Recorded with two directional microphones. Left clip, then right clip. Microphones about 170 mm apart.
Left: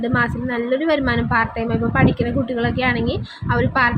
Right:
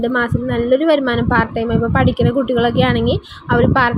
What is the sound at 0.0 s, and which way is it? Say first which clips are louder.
A woman's voice: right 3 dB; 15° right (ahead or behind).